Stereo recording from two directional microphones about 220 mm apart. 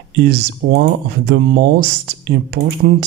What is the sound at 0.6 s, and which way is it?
Speech, 50° right (ahead or behind).